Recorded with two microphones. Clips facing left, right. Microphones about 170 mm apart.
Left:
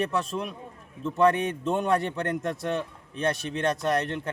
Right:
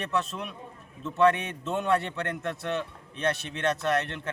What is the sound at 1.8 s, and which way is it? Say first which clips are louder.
Speech: right 1 dB; 40° left (ahead or behind).